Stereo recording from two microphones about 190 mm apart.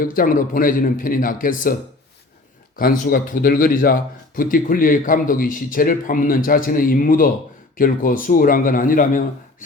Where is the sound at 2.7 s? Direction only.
50° left (ahead or behind).